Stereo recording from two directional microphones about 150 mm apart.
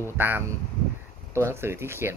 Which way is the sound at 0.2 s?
15° right (ahead or behind).